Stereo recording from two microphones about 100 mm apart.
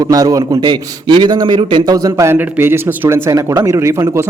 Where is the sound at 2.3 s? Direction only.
20° right (ahead or behind).